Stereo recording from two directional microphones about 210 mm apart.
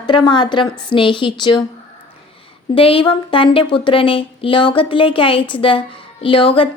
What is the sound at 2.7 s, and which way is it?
Speech, 25° left (ahead or behind).